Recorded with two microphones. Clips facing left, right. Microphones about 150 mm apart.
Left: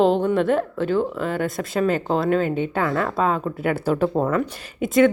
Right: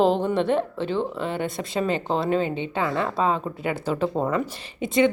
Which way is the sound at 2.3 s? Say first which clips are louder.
Left 3 dB; 45° left (ahead or behind).